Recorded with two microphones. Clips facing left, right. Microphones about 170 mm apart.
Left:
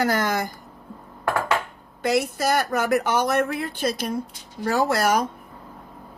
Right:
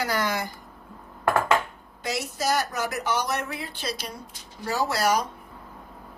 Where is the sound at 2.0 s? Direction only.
55° left (ahead or behind).